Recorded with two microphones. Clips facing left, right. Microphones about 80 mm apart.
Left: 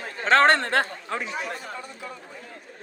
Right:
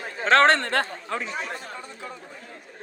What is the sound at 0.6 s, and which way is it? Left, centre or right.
Speech, centre.